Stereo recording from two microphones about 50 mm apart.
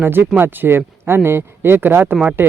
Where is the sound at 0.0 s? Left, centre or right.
Right.